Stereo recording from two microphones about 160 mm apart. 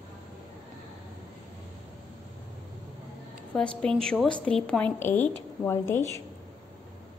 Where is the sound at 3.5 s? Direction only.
5° left (ahead or behind).